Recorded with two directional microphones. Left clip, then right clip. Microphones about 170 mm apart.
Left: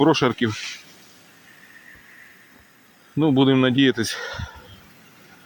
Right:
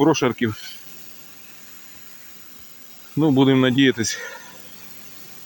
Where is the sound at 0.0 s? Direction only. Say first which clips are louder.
Even; 5° right (ahead or behind).